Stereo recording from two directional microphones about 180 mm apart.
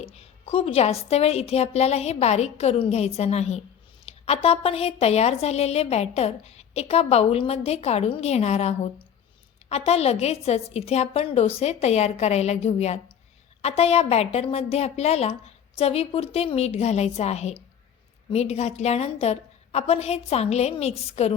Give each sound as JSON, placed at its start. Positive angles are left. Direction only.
{"t": 0.0, "sound": "a woman's voice", "side_deg": 35}
{"t": 4.1, "sound": "a sound", "side_deg": 35}
{"t": 4.4, "sound": "a woman's voice", "side_deg": 35}